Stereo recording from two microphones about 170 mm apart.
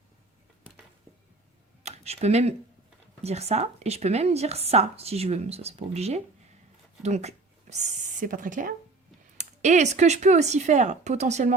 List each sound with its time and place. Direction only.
1.8 s speech: 40° right (ahead or behind)